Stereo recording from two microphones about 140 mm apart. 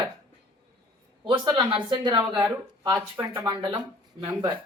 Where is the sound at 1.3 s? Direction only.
35° right (ahead or behind).